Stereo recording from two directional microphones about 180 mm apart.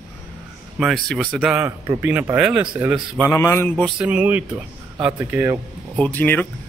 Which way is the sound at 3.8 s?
5° right (ahead or behind).